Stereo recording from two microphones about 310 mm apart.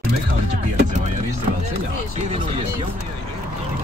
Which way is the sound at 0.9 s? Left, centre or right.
Right.